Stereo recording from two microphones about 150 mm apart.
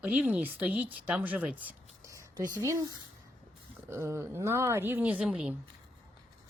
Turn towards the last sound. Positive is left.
turn(degrees=-5)  # may be behind; listen again after turning